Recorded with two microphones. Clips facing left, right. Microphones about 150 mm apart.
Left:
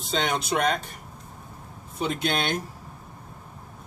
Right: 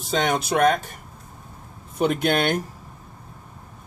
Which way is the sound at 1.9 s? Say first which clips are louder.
Right 6 dB; 55° right (ahead or behind).